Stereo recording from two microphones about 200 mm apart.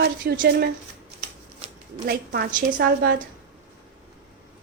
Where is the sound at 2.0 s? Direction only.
50° right (ahead or behind).